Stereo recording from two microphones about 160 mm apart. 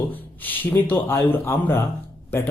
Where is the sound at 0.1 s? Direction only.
10° left (ahead or behind).